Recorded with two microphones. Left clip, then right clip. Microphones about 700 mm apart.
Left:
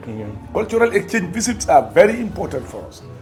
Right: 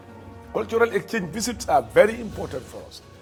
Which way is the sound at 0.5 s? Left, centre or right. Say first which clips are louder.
Left 5 dB; right.